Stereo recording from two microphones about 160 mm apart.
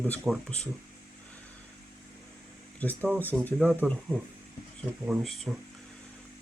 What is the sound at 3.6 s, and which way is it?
Speech, 10° right (ahead or behind).